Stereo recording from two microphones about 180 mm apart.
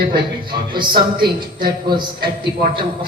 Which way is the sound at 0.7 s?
25° right (ahead or behind).